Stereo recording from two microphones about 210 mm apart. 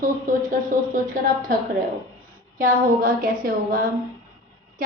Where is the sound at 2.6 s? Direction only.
45° right (ahead or behind).